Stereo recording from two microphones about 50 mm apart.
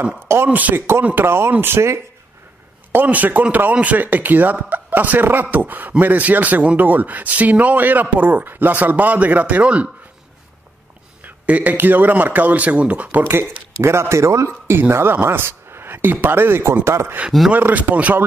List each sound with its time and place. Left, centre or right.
0.5 s speech: right
0.7 s speech: right
2.9 s speech: right
11.2 s speech: right
13.2 s speech: right
13.8 s speech: right
14.8 s speech: right
16.8 s speech: right
17.5 s speech: right